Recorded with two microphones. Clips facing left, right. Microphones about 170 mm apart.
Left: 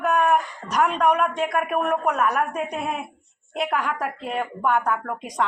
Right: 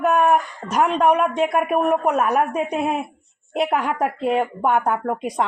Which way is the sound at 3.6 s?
30° right (ahead or behind).